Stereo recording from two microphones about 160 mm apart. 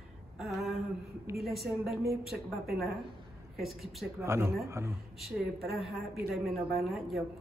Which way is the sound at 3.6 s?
Centre (ahead or behind).